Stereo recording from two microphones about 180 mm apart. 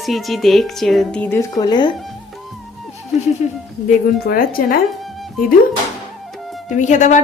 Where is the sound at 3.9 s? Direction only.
55° left (ahead or behind).